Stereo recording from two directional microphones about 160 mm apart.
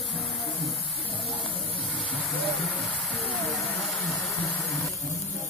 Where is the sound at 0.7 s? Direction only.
35° left (ahead or behind).